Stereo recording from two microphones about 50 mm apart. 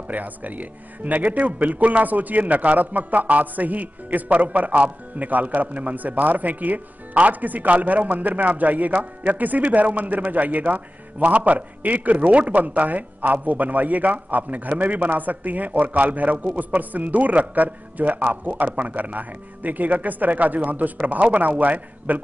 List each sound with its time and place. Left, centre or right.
0.1 s speech: right